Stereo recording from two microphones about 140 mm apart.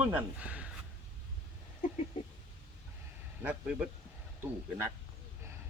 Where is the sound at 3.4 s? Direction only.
5° right (ahead or behind).